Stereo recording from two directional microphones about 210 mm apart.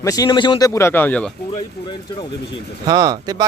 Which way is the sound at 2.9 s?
20° right (ahead or behind).